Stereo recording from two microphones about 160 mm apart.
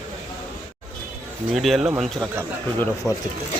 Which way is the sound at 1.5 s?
Centre (ahead or behind).